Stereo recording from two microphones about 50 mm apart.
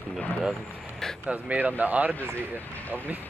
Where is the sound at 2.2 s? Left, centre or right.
Right.